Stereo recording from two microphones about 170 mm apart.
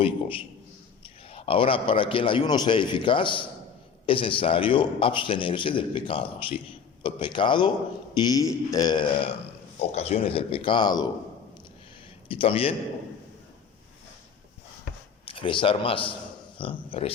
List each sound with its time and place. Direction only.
0.0 s a man's voice: 30° left (ahead or behind)
9.9 s a man's voice: 35° left (ahead or behind)
12.3 s a man's voice: 30° left (ahead or behind)
15.3 s a man's voice: 30° left (ahead or behind)